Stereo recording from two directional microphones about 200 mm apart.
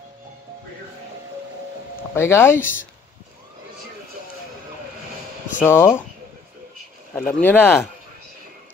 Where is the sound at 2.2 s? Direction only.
10° left (ahead or behind).